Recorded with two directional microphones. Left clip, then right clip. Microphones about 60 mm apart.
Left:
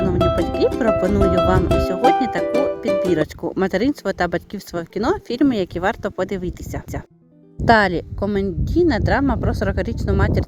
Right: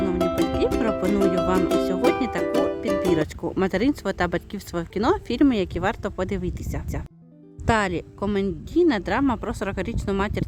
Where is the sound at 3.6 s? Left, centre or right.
Left.